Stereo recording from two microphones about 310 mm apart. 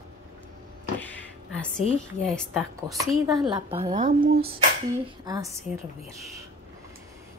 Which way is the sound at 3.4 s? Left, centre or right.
Centre.